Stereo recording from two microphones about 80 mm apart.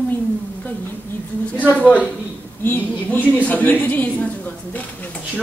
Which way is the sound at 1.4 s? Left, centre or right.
Centre.